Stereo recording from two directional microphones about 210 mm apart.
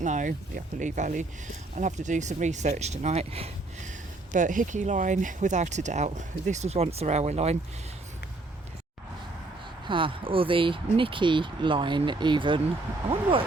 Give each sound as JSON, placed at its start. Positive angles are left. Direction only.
{"t": 0.0, "sound": "speech", "side_deg": -35}
{"t": 9.9, "sound": "speech", "side_deg": -25}